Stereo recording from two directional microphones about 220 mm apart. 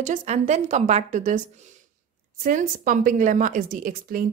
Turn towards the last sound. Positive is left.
turn(degrees=-40)  # may be behind; listen again after turning